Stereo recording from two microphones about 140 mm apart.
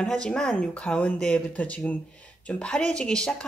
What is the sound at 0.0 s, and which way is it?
Speech, 5° left (ahead or behind).